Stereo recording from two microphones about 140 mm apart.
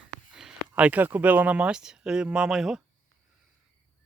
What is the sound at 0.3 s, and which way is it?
Speech, 5° right (ahead or behind).